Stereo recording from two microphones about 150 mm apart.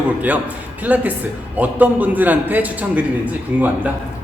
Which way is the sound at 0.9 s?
10° right (ahead or behind).